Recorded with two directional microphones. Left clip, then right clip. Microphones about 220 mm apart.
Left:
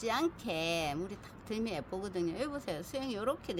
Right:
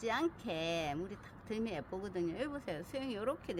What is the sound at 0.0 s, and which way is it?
Speech, centre (ahead or behind).